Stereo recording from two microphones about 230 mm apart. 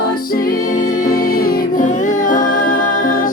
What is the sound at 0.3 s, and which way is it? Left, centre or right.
Music, left.